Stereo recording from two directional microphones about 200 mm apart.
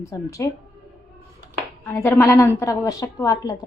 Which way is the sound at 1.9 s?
10° left (ahead or behind).